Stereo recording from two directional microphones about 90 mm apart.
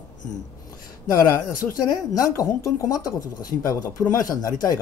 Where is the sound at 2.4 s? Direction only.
40° left (ahead or behind).